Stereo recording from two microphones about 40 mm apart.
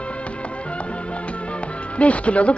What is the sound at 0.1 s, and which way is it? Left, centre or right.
Music, left.